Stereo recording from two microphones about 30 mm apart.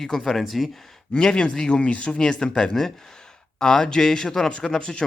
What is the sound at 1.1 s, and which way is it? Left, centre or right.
Speech, left.